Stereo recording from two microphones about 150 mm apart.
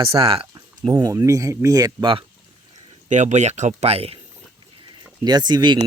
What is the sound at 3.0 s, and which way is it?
Speech, 50° right (ahead or behind).